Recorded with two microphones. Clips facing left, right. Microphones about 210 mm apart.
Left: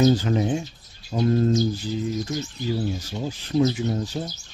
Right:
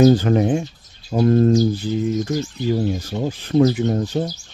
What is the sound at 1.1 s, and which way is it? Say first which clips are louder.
Bird: right 6 dB; 55° right (ahead or behind).